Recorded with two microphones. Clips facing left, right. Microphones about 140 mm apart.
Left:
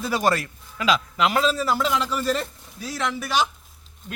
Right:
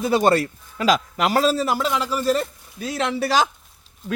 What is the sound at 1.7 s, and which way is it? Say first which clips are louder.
Speech: right 1 dB; 5° right (ahead or behind).